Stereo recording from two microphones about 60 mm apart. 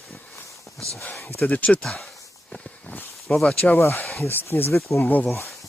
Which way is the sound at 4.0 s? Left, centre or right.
Centre.